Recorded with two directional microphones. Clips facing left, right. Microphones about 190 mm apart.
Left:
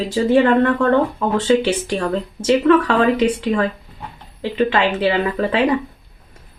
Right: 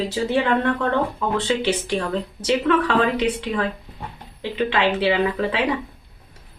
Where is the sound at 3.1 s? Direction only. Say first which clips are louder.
Left 5 dB; 45° left (ahead or behind).